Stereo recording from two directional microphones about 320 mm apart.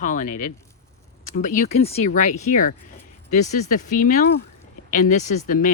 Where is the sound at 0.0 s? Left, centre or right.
Left.